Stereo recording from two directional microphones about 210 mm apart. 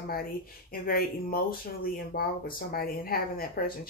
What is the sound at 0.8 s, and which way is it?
Speech, 45° left (ahead or behind).